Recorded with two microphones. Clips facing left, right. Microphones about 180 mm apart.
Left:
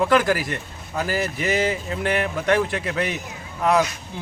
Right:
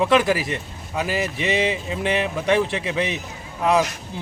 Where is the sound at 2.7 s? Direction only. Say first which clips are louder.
Right 1 dB; 25° right (ahead or behind).